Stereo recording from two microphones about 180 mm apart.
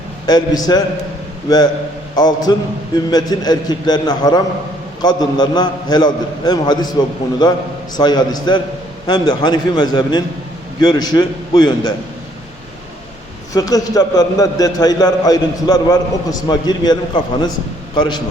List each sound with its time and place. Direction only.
0.3 s a man's voice: 25° left (ahead or behind)
7.9 s a man's voice: 25° left (ahead or behind)
13.5 s a man's voice: 20° left (ahead or behind)